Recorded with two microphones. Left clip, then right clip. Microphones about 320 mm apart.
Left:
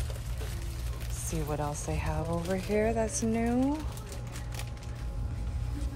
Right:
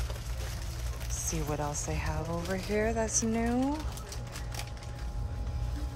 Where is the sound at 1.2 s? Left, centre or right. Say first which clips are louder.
Even; centre.